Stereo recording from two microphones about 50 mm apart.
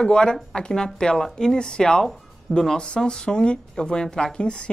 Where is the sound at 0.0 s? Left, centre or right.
Centre.